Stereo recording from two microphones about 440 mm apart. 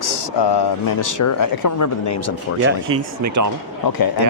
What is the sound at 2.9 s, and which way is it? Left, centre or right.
Speech, right.